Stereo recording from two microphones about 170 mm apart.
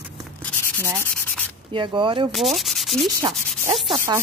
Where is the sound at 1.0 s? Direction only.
10° left (ahead or behind).